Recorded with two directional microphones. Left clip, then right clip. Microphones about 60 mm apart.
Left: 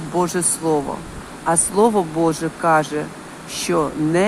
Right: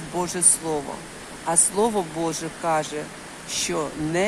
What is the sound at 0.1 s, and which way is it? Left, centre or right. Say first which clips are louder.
Speech: left 5 dB; left.